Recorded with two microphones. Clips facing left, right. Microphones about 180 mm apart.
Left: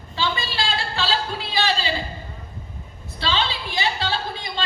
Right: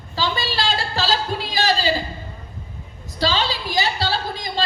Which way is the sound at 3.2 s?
40° right (ahead or behind).